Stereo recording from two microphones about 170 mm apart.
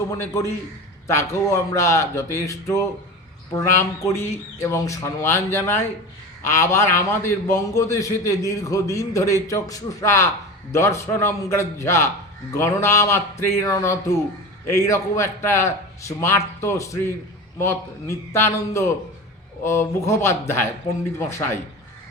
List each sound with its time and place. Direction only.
1.0 s a man's voice: 15° left (ahead or behind)